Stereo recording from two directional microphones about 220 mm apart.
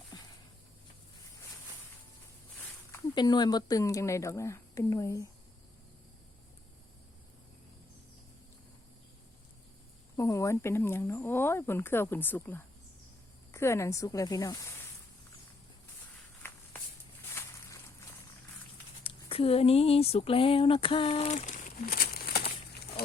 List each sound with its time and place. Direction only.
2.9 s speech: 20° left (ahead or behind)
10.2 s speech: 15° left (ahead or behind)
19.0 s speech: 25° left (ahead or behind); by 22.5 s 45° left (ahead or behind)